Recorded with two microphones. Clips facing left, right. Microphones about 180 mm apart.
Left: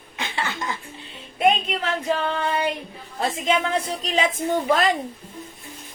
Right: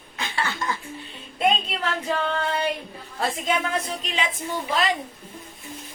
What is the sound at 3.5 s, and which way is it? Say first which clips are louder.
A woman's voice: left 5 dB; 35° left (ahead or behind).